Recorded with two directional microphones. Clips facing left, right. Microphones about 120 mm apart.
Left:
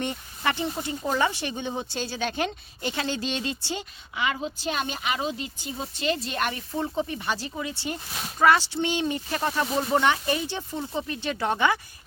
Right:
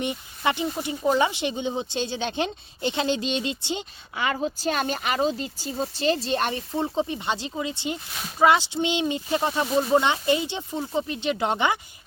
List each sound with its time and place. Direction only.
0.0 s speech: 15° right (ahead or behind)
4.2 s speech: 35° right (ahead or behind); by 11.8 s 20° right (ahead or behind)